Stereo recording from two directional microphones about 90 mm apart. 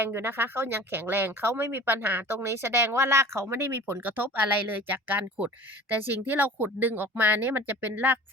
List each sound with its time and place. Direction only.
0.0 s speech: 25° right (ahead or behind)